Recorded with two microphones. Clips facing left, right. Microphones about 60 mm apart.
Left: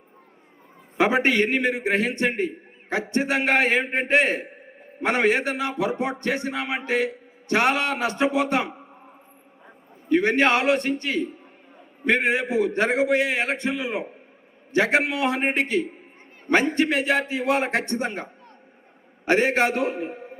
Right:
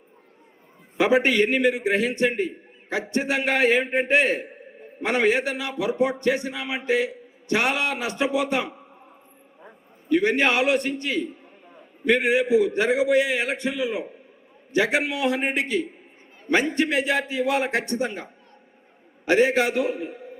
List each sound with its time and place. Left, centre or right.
0.9 s a man's voice: left
10.1 s a man's voice: left